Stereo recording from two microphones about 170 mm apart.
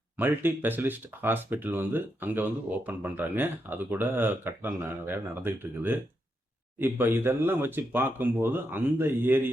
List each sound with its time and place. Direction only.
0.2 s speech: 10° right (ahead or behind)